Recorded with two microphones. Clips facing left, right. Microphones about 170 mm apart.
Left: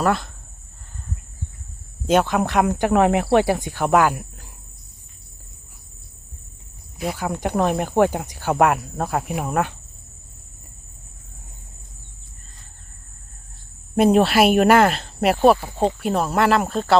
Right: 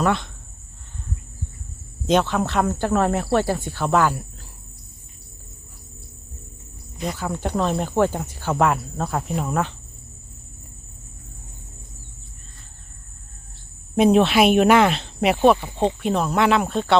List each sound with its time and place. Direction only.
0.0 s cricket: 5° left (ahead or behind)
2.0 s speech: 10° left (ahead or behind)
7.0 s speech: 10° left (ahead or behind)
8.5 s speech: 60° left (ahead or behind)
9.0 s speech: 10° left (ahead or behind)
13.9 s cricket: 5° left (ahead or behind)